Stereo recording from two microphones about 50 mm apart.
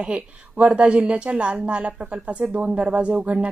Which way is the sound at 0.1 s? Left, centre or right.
Right.